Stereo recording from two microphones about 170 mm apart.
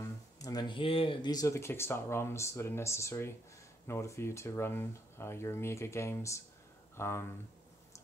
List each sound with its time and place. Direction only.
0.0 s speech: 20° left (ahead or behind)